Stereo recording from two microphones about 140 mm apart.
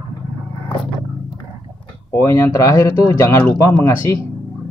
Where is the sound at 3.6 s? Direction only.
10° left (ahead or behind).